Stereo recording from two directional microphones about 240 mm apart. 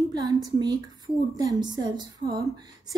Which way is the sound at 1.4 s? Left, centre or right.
Centre.